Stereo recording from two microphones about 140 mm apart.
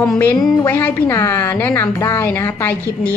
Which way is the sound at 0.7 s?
15° left (ahead or behind).